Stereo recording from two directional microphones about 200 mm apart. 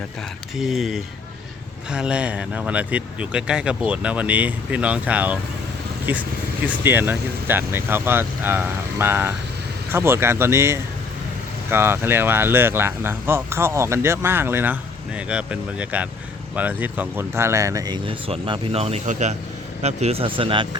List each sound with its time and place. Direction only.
0.5 s speech: centre (ahead or behind); by 20.7 s 25° right (ahead or behind)